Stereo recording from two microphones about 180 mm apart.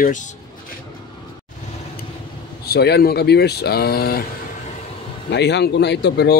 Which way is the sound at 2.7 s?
65° left (ahead or behind).